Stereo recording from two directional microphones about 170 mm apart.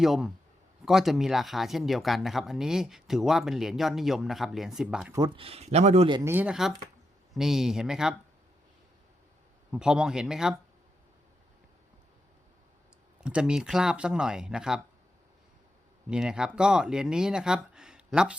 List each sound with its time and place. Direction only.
0.0 s speech: centre (ahead or behind)
5.1 s speech: 25° right (ahead or behind)
6.2 s speech: 10° right (ahead or behind)
9.7 s speech: 5° right (ahead or behind)
13.2 s speech: 5° right (ahead or behind)
16.0 s speech: 5° right (ahead or behind)